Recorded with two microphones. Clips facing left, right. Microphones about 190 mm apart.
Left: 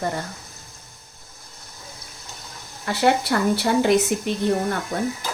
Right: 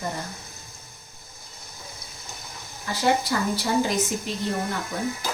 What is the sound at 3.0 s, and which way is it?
Speech, 65° left (ahead or behind).